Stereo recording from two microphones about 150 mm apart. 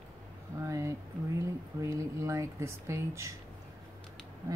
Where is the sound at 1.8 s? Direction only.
20° right (ahead or behind).